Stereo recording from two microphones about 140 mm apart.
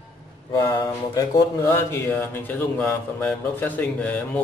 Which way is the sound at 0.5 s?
30° left (ahead or behind).